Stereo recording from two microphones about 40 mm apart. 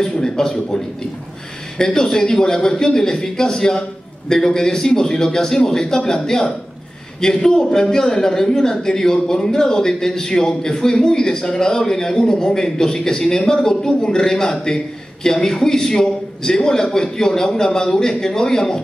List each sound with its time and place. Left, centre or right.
0.0 s a man's voice: centre
1.8 s a man's voice: centre